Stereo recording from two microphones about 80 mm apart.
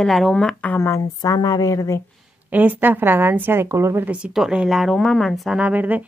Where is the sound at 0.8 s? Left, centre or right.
Left.